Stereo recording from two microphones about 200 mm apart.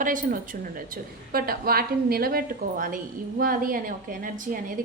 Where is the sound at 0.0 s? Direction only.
40° right (ahead or behind).